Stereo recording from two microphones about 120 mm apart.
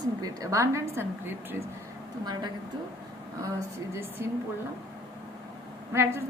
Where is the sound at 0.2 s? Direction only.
25° right (ahead or behind).